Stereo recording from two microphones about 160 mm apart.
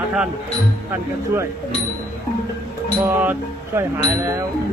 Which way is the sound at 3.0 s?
10° right (ahead or behind).